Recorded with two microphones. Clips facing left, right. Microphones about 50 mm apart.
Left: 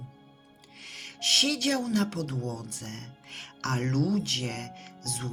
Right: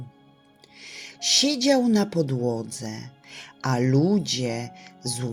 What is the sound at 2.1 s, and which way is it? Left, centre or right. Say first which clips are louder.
Speech: right 9 dB; right.